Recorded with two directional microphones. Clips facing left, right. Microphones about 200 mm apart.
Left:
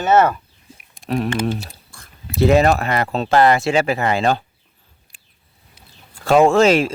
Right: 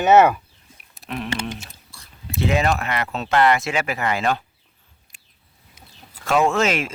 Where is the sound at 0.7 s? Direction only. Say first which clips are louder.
Left 7 dB; 30° left (ahead or behind).